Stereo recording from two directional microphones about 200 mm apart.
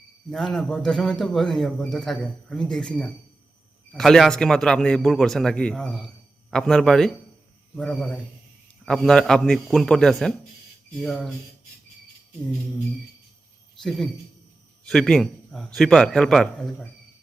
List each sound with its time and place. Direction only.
0.3 s a man's voice: centre (ahead or behind)
14.8 s a man's voice: 5° left (ahead or behind)